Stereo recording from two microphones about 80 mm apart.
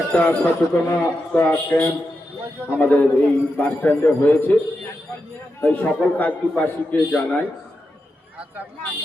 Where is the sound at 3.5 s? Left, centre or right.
Centre.